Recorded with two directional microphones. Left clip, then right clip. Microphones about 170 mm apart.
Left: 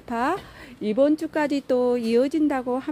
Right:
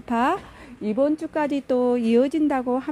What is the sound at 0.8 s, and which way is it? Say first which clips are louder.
Speech: left 2 dB; 10° left (ahead or behind).